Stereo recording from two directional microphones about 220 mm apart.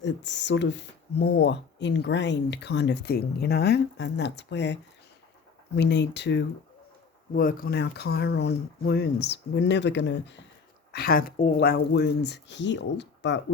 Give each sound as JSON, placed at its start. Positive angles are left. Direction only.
{"t": 0.0, "sound": "speech", "side_deg": 55}
{"t": 7.3, "sound": "speech", "side_deg": 40}